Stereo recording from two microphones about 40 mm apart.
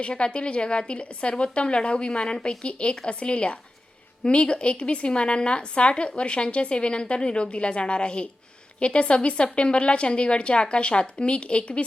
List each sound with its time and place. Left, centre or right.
0.0 s a woman's voice: left